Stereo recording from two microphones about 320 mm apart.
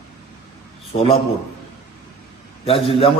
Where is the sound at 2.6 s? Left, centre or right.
Centre.